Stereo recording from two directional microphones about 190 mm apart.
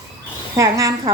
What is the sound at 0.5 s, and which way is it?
Speech, 15° right (ahead or behind).